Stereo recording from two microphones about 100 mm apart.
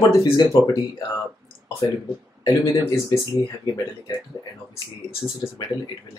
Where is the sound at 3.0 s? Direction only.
45° left (ahead or behind).